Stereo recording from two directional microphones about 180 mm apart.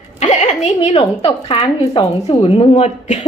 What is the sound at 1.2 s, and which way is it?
A woman's voice, 30° left (ahead or behind).